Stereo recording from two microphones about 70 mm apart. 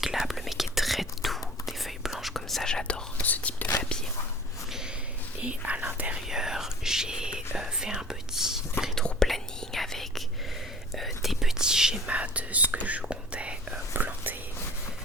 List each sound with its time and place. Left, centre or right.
0.0 s whispering: centre; by 3.8 s left
5.4 s whispering: centre
6.1 s whispering: centre
9.0 s whispering: centre; by 14.3 s right